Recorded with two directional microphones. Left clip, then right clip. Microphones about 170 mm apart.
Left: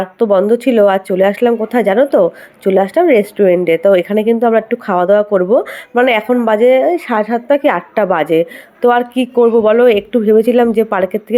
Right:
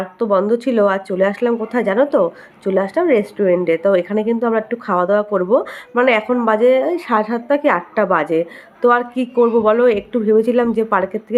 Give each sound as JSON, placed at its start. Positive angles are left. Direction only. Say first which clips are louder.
{"t": 0.0, "sound": "speech", "louder": "left 5 dB", "side_deg": 20}